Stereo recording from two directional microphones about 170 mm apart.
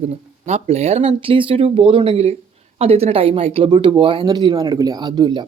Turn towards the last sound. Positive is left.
turn(degrees=-25)  # may be behind; listen again after turning